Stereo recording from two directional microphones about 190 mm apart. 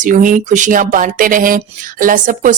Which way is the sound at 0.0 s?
45° right (ahead or behind).